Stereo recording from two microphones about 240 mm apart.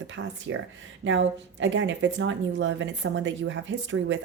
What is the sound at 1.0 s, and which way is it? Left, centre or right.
A woman's voice, right.